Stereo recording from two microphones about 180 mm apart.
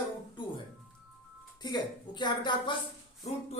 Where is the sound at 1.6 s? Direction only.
25° left (ahead or behind).